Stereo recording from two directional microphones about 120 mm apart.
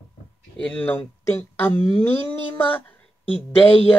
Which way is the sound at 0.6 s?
10° left (ahead or behind).